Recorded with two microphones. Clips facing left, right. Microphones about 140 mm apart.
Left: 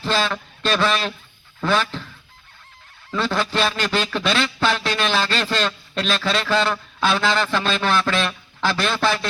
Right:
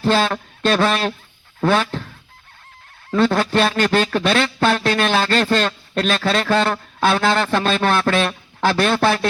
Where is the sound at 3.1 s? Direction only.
50° right (ahead or behind).